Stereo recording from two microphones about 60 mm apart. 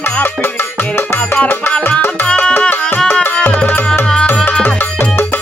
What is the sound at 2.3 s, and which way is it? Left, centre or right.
Music, centre.